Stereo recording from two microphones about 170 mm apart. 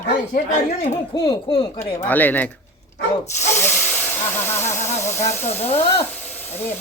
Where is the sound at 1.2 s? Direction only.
30° left (ahead or behind).